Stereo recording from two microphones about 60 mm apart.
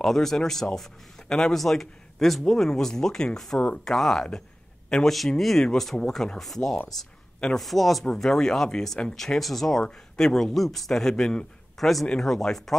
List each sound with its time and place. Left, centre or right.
0.0 s speech: centre
3.9 s a man's voice: centre